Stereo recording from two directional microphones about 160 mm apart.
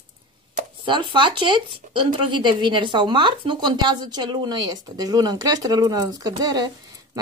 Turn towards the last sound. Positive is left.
turn(degrees=-25)  # may be behind; listen again after turning